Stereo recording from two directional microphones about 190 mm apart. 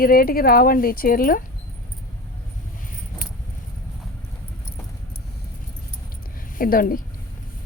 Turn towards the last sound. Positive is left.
turn(degrees=50)  # may be behind; listen again after turning